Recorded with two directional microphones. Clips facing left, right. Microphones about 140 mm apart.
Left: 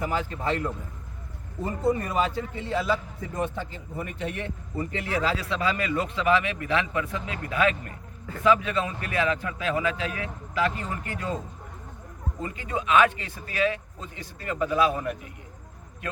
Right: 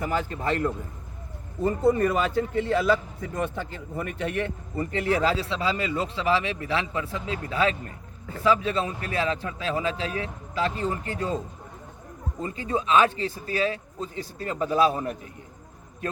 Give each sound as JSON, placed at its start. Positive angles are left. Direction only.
{"t": 0.1, "sound": "a man's voice", "side_deg": -50}
{"t": 1.6, "sound": "a man's voice", "side_deg": -55}
{"t": 12.4, "sound": "a man's voice", "side_deg": -30}